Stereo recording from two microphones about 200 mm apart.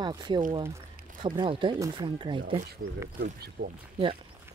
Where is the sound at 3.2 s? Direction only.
50° right (ahead or behind).